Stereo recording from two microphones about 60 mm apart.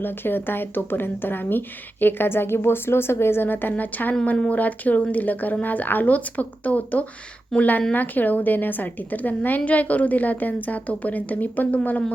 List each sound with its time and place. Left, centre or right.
0.0 s a woman's voice: left